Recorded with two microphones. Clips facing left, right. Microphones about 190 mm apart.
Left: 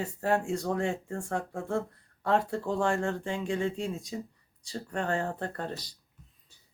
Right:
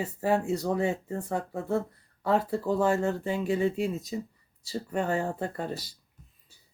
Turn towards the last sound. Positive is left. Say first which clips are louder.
# right 3 dB
turn(degrees=-5)  # may be behind; listen again after turning